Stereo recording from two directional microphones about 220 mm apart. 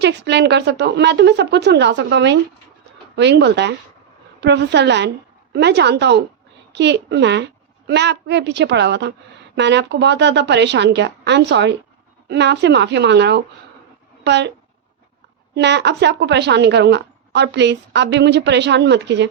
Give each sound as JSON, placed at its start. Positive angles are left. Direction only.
{"t": 0.0, "sound": "a woman's voice", "side_deg": -50}
{"t": 15.5, "sound": "a woman's voice", "side_deg": -50}